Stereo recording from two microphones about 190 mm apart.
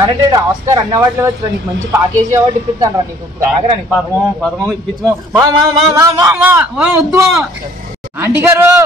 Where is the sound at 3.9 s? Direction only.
Centre (ahead or behind).